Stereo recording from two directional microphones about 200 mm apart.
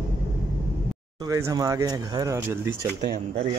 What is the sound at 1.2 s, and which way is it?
Speech, 15° right (ahead or behind).